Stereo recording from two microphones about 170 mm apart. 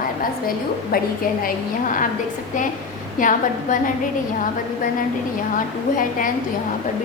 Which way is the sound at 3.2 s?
50° left (ahead or behind).